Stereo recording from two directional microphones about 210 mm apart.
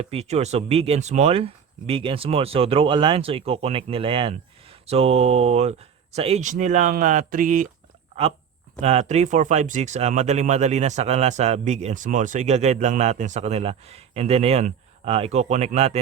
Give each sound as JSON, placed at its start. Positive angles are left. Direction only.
{"t": 0.0, "sound": "speech", "side_deg": -30}
{"t": 8.8, "sound": "speech", "side_deg": -30}